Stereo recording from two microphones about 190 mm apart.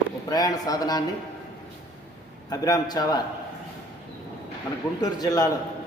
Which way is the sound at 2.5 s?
20° left (ahead or behind).